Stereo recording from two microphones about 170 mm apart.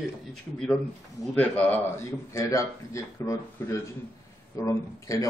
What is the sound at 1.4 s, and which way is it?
A man's voice, 10° left (ahead or behind).